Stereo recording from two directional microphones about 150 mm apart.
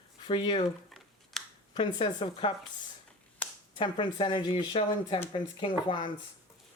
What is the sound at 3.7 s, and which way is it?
Speech, 30° left (ahead or behind).